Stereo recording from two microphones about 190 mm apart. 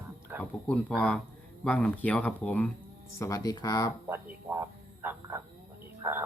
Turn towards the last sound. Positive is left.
turn(degrees=-10)  # may be behind; listen again after turning